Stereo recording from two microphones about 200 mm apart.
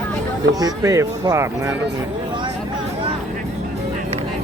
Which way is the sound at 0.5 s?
15° right (ahead or behind).